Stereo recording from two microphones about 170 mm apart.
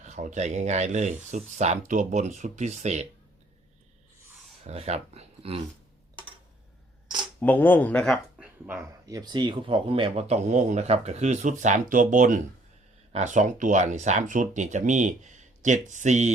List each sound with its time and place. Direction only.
0.0 s speech: 45° right (ahead or behind)
4.6 s speech: 40° right (ahead or behind)
7.4 s speech: 10° left (ahead or behind)
8.4 s a sound: 10° right (ahead or behind)
9.0 s speech: 25° right (ahead or behind); by 16.3 s 45° right (ahead or behind)